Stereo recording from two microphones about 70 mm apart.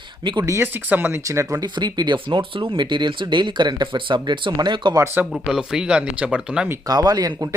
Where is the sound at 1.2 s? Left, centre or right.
Right.